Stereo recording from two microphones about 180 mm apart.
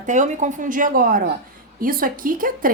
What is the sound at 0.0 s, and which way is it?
A woman's voice, 45° right (ahead or behind).